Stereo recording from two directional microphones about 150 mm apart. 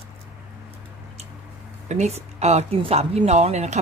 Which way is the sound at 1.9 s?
50° right (ahead or behind).